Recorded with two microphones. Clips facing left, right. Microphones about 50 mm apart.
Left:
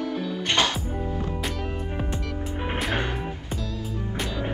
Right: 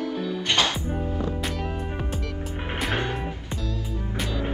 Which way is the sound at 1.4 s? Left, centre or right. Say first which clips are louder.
Right 1 dB; centre.